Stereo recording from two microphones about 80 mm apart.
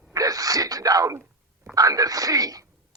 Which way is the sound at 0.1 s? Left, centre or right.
Right.